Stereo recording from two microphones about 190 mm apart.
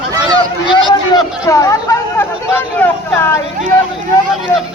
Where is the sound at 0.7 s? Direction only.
25° left (ahead or behind).